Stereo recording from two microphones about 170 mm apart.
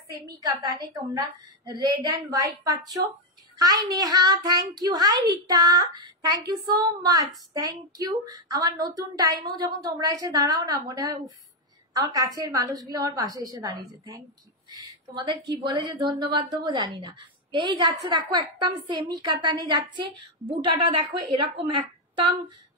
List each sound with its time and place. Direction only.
0.4 s a woman's voice: 20° right (ahead or behind)